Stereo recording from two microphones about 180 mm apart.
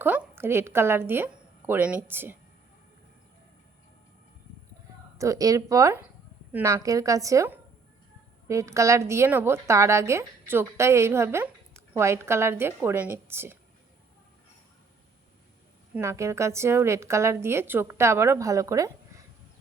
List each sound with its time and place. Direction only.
0.0 s a woman's voice: 10° right (ahead or behind)
5.1 s a woman's voice: 20° right (ahead or behind)
16.0 s a woman's voice: 15° right (ahead or behind)